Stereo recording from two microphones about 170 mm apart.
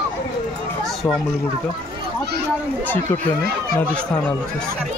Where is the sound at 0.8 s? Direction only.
Centre (ahead or behind).